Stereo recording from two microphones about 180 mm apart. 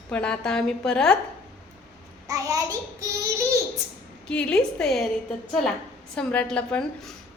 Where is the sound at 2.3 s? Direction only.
20° right (ahead or behind).